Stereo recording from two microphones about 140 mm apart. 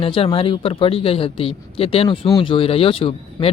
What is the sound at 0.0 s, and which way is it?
Speech, 40° left (ahead or behind).